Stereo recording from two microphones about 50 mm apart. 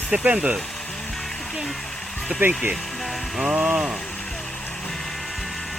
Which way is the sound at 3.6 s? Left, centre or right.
Centre.